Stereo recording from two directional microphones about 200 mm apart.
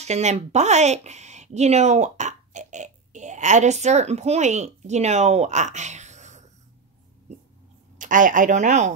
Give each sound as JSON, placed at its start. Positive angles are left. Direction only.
{"t": 0.0, "sound": "speech", "side_deg": -35}
{"t": 8.0, "sound": "speech", "side_deg": -40}